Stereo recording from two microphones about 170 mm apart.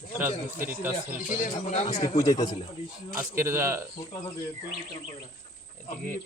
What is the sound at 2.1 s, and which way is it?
Speech, 20° left (ahead or behind).